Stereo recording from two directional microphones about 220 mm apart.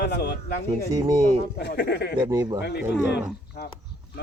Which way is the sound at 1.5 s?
50° left (ahead or behind).